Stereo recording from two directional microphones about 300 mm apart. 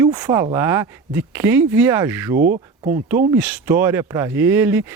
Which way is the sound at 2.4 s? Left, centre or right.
Right.